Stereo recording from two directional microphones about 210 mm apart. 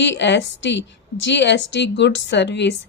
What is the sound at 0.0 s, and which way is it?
A woman's voice, 55° left (ahead or behind).